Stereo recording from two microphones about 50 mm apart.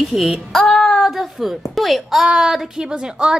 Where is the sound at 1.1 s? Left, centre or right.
Centre.